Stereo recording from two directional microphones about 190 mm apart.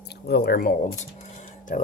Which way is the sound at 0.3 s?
55° left (ahead or behind).